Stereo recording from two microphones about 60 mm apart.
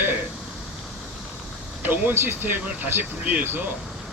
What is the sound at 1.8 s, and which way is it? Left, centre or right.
A man's voice, right.